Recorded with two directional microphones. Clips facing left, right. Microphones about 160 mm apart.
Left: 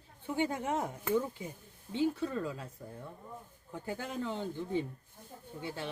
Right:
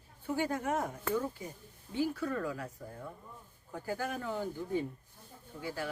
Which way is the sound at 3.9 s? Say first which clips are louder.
Right 1 dB; 20° left (ahead or behind).